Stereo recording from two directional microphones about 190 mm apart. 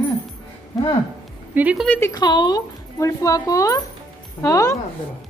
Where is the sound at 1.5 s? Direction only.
5° right (ahead or behind).